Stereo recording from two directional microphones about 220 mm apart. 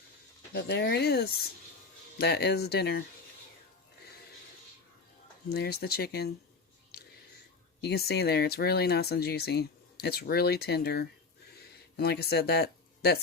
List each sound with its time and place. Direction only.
0.5 s speech: 50° left (ahead or behind)
5.5 s speech: 45° left (ahead or behind)
7.8 s speech: 50° left (ahead or behind)